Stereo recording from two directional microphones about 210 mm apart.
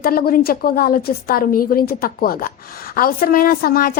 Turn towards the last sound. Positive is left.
turn(degrees=45)  # may be behind; listen again after turning